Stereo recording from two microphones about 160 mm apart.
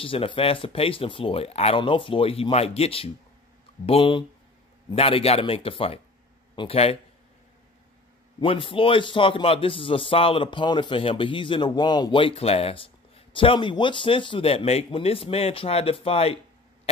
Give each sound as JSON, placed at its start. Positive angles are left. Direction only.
{"t": 0.0, "sound": "a man's voice", "side_deg": 35}
{"t": 8.4, "sound": "a man's voice", "side_deg": 35}